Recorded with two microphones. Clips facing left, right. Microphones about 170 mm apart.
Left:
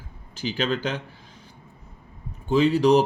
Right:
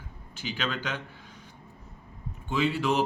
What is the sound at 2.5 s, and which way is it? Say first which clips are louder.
Speech: left 9 dB; 40° left (ahead or behind).